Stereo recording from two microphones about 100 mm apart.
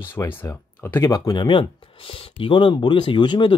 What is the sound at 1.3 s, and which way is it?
Speech, 55° left (ahead or behind).